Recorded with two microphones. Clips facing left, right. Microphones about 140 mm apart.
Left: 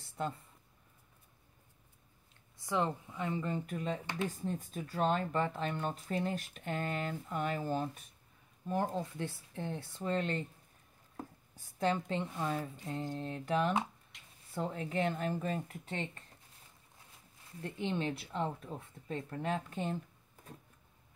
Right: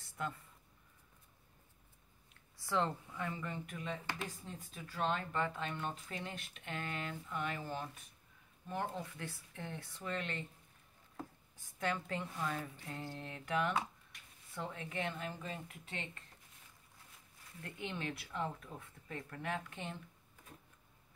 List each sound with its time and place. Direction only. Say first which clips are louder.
0.0 s a sound: left 4 dB; 30° left (ahead or behind)
2.5 s speech: left 2 dB; 20° left (ahead or behind); by 4.0 s 40° left (ahead or behind)
4.0 s speech: left 6 dB; 20° left (ahead or behind)
4.4 s speech: left 11 dB; 45° left (ahead or behind)
11.8 s speech: left 6 dB; 30° left (ahead or behind)
13.1 s a sound: left 4 dB; 30° left (ahead or behind)
14.6 s speech: left 7 dB; 35° left (ahead or behind)
17.6 s speech: left 7 dB; 30° left (ahead or behind)